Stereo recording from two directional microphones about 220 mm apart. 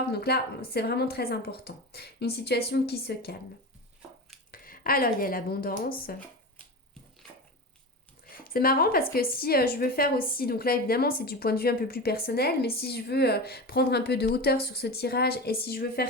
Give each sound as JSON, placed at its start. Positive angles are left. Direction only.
{"t": 0.1, "sound": "a woman's voice", "side_deg": 45}
{"t": 4.5, "sound": "speech", "side_deg": 40}
{"t": 8.4, "sound": "a woman's voice", "side_deg": 40}